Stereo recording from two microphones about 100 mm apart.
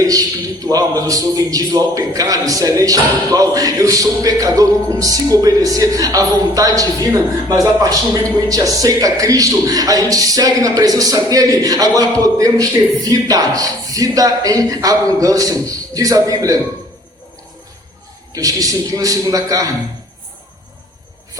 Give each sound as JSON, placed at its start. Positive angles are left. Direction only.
{"t": 0.0, "sound": "speech", "side_deg": -35}
{"t": 18.3, "sound": "speech", "side_deg": -35}